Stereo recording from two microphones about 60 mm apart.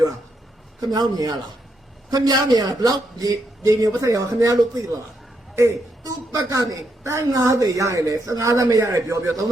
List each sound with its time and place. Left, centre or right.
0.8 s a man's voice: right
3.8 s a woman's voice: right
6.0 s a woman's voice: right